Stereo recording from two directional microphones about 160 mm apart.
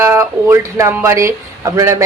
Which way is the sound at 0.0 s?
15° right (ahead or behind).